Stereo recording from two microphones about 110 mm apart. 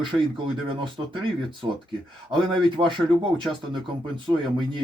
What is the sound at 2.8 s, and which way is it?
Speech, 45° right (ahead or behind).